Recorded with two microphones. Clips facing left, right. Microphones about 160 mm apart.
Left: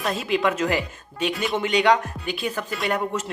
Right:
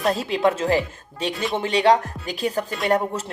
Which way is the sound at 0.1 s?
35° right (ahead or behind).